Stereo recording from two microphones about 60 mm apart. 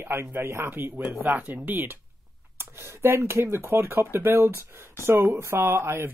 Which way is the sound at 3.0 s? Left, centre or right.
Right.